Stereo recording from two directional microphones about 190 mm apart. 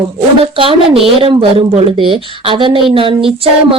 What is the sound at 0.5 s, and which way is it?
Speech, 30° right (ahead or behind).